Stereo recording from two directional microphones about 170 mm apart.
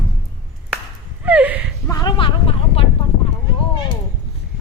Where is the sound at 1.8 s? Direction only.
20° left (ahead or behind).